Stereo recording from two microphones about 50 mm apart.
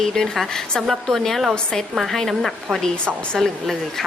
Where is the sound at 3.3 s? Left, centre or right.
Centre.